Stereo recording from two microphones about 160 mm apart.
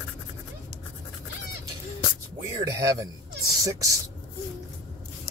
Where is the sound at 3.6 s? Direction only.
20° right (ahead or behind).